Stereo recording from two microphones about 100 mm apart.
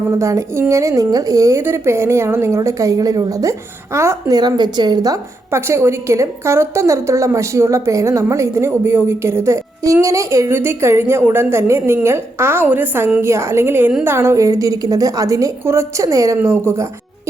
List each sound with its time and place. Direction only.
0.1 s a woman's voice: 30° right (ahead or behind)
4.4 s a woman's voice: 45° right (ahead or behind)
5.5 s a woman's voice: 25° right (ahead or behind)
16.4 s a woman's voice: 25° right (ahead or behind)